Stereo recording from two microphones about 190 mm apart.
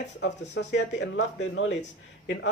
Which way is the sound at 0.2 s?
65° left (ahead or behind).